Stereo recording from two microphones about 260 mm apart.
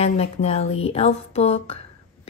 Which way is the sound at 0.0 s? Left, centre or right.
Left.